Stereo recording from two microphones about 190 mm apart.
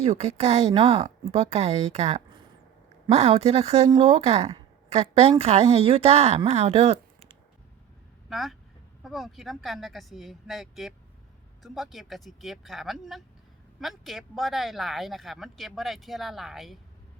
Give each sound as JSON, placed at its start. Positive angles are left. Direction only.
{"t": 0.0, "sound": "a woman's voice", "side_deg": -35}
{"t": 8.3, "sound": "speech", "side_deg": 0}